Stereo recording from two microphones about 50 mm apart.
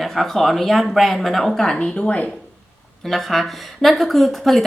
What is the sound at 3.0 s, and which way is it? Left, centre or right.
Speech, centre.